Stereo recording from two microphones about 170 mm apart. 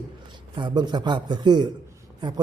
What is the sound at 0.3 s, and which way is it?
A man's voice, 25° right (ahead or behind).